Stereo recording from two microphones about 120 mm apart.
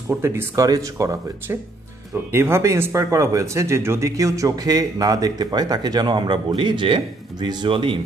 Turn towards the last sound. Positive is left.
turn(degrees=-45)  # may be behind; listen again after turning